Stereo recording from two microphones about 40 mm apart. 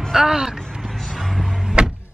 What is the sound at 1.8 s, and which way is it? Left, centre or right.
Music, right.